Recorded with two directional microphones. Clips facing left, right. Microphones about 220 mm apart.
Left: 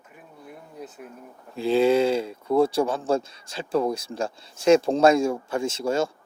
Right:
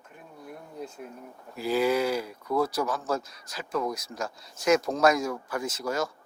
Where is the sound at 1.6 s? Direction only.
25° left (ahead or behind).